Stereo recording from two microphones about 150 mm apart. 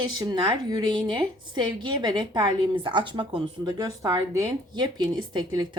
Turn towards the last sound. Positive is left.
turn(degrees=-30)  # may be behind; listen again after turning